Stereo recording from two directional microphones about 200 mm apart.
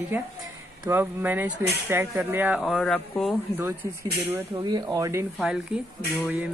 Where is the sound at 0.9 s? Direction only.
10° right (ahead or behind).